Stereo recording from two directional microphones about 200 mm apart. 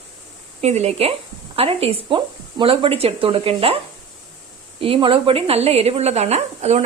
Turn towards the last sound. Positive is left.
turn(degrees=-35)  # may be behind; listen again after turning